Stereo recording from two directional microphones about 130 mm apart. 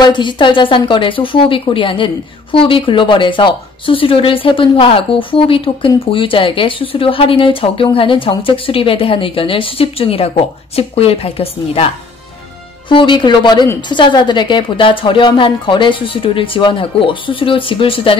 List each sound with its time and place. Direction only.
0.0 s a woman's voice: 35° left (ahead or behind)
12.9 s a woman's voice: 35° left (ahead or behind)